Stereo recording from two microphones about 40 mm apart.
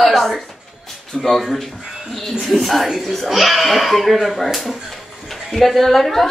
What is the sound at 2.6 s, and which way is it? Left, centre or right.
Speech, centre.